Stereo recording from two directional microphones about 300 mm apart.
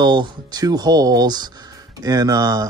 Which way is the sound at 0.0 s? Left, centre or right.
Centre.